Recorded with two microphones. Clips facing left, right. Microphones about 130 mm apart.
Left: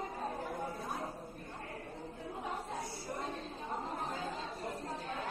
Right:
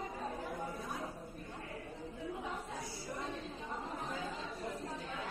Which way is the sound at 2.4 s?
35° left (ahead or behind).